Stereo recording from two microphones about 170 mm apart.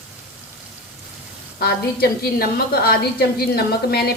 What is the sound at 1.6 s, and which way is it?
A woman's voice, 60° left (ahead or behind).